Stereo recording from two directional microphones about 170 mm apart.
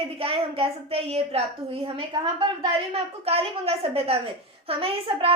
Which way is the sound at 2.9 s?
35° right (ahead or behind).